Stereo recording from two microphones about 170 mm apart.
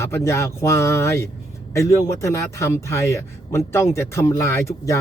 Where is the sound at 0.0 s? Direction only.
15° left (ahead or behind).